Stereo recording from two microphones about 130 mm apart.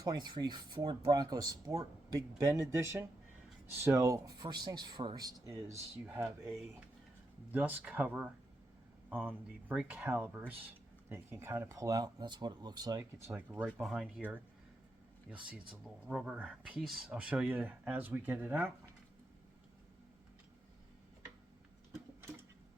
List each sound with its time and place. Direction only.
0.0 s speech: 30° right (ahead or behind)
6.1 s speech: 10° right (ahead or behind); by 13.0 s 30° right (ahead or behind)
13.0 s speech: 20° right (ahead or behind)
13.8 s speech: 5° right (ahead or behind)
15.4 s speech: 10° right (ahead or behind)